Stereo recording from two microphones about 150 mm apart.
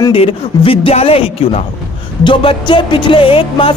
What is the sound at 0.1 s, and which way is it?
A man's voice, 40° left (ahead or behind).